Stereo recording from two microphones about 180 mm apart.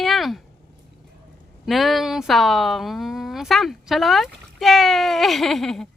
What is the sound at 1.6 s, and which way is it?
Speech, centre (ahead or behind).